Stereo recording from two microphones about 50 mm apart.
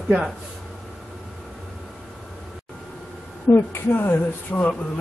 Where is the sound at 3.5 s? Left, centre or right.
Left.